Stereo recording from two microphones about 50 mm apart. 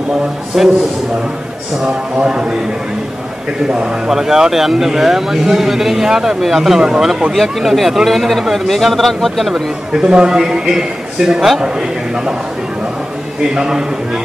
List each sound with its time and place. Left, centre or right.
0.5 s speech: centre
2.1 s a man's voice: centre
4.1 s a man's voice: centre
7.3 s speech: centre
9.9 s a man's voice: centre
13.6 s a man's voice: centre